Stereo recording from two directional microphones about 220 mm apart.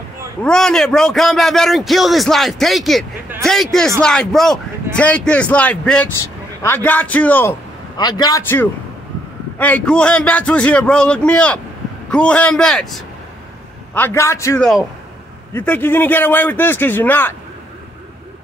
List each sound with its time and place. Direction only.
0.4 s a man's voice: 5° left (ahead or behind)
8.0 s a man's voice: 20° left (ahead or behind)